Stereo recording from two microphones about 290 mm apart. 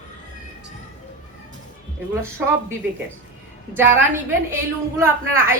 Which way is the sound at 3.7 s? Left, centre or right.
Centre.